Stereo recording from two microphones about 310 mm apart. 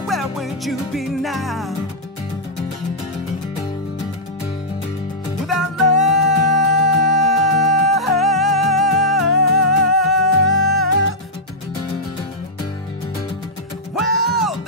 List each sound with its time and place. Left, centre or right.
0.0 s music: centre
5.5 s music: left
8.2 s music: centre
8.8 s music: left
13.9 s music: left
14.3 s music: centre